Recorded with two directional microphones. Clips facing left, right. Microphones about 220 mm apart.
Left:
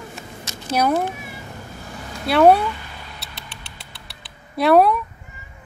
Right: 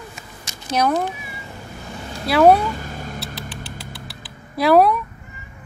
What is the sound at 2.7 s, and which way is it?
Cat, 45° right (ahead or behind).